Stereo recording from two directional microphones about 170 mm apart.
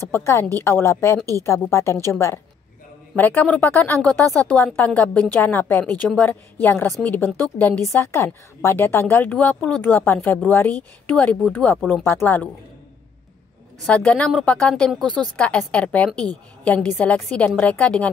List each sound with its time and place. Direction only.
0.0 s speech: 15° left (ahead or behind)
13.7 s speech: 5° left (ahead or behind)